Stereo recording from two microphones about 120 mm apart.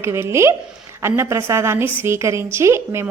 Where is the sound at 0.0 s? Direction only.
20° right (ahead or behind).